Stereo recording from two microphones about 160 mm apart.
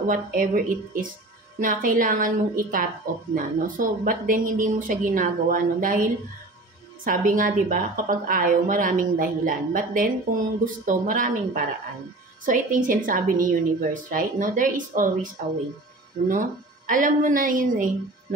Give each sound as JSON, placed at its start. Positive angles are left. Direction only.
{"t": 0.0, "sound": "a woman's voice", "side_deg": -60}
{"t": 16.3, "sound": "a woman's voice", "side_deg": -55}